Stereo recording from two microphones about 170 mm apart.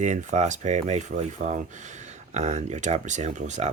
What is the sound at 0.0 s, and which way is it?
Speech, 45° right (ahead or behind).